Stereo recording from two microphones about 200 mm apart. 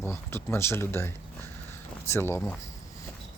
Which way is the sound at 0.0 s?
10° left (ahead or behind).